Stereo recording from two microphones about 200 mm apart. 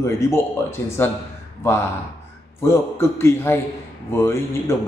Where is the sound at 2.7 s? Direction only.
15° left (ahead or behind).